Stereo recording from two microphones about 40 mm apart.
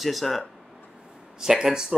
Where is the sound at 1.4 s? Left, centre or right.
Centre.